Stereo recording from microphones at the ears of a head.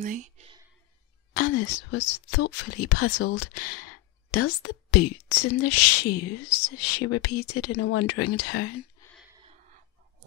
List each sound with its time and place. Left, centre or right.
0.0 s speech: right
1.3 s a woman's voice: left
9.4 s a sound: right